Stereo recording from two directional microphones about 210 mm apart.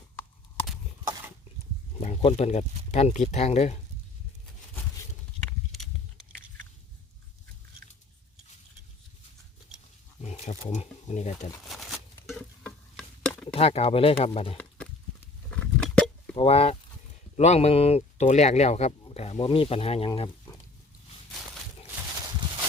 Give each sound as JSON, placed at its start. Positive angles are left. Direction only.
{"t": 2.0, "sound": "speech", "side_deg": 30}
{"t": 5.5, "sound": "a sound", "side_deg": 0}
{"t": 10.2, "sound": "wild animals", "side_deg": 30}
{"t": 10.7, "sound": "speech", "side_deg": 35}
{"t": 11.7, "sound": "patter", "side_deg": 0}
{"t": 13.5, "sound": "speech", "side_deg": 30}
{"t": 15.4, "sound": "a sound", "side_deg": 5}
{"t": 16.3, "sound": "speech", "side_deg": 25}